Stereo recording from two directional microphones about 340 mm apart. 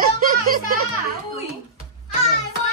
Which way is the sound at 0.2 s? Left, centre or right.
Right.